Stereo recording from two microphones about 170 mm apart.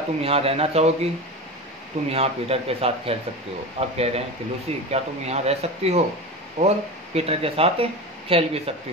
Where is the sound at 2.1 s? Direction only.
35° right (ahead or behind).